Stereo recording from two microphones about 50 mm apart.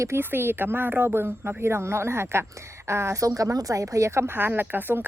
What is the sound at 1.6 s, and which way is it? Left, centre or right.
Speech, right.